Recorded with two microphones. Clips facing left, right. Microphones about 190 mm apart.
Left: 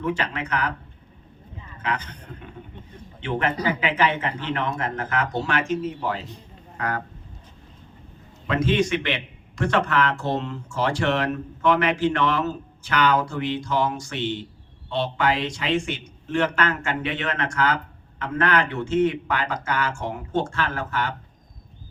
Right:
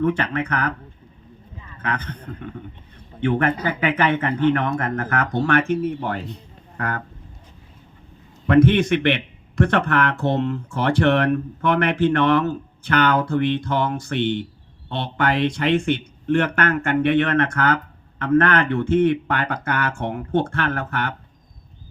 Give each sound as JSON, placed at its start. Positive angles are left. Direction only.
{"t": 0.0, "sound": "a man's voice", "side_deg": -55}
{"t": 1.8, "sound": "a man's voice", "side_deg": -55}
{"t": 8.4, "sound": "a man's voice", "side_deg": -60}